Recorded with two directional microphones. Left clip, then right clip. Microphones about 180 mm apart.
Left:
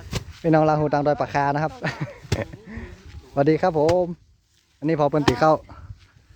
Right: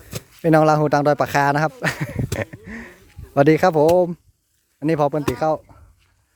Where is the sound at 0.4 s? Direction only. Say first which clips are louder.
Right 4 dB; 50° right (ahead or behind).